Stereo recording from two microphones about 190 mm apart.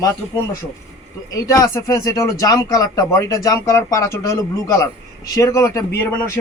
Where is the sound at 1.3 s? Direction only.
15° left (ahead or behind).